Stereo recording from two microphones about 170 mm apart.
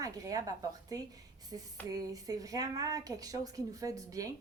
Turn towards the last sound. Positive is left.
turn(degrees=-20)  # may be behind; listen again after turning